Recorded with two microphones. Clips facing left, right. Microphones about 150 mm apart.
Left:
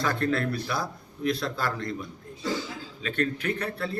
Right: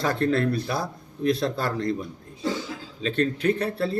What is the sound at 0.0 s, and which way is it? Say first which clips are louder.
Speech: right 4 dB; 30° right (ahead or behind).